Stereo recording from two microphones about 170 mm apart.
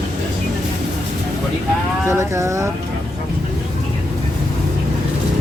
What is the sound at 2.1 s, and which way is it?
Speech, 15° right (ahead or behind).